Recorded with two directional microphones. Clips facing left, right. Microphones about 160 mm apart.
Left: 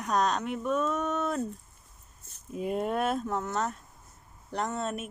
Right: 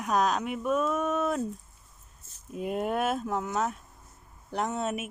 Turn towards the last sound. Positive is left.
turn(degrees=-5)  # may be behind; listen again after turning